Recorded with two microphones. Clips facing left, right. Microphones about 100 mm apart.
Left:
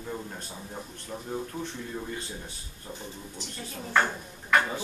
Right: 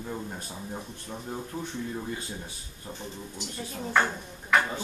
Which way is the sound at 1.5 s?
25° right (ahead or behind).